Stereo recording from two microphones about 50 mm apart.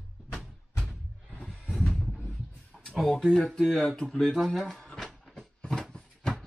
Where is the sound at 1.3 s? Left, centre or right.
Centre.